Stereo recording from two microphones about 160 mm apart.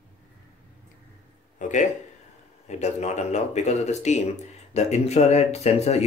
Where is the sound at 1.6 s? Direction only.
50° left (ahead or behind).